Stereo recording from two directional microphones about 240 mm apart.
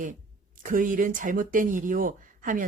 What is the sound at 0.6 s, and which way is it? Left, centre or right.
A woman's voice, right.